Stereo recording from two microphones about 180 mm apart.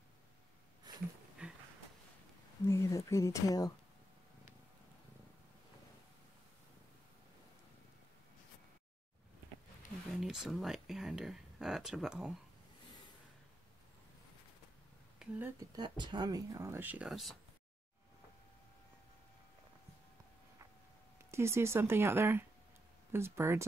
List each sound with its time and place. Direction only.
0.9 s a sound: 25° right (ahead or behind)
1.4 s a sound: 5° right (ahead or behind)
2.6 s speech: 15° left (ahead or behind)
10.1 s speech: 5° right (ahead or behind)
15.1 s speech: 10° right (ahead or behind)
15.7 s speech: 25° right (ahead or behind); by 17.4 s centre (ahead or behind)
21.3 s speech: 15° right (ahead or behind)